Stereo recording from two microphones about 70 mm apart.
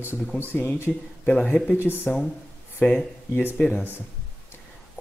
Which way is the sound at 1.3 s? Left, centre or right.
Centre.